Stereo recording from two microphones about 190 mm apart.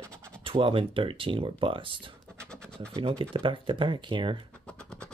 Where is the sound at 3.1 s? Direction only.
25° right (ahead or behind).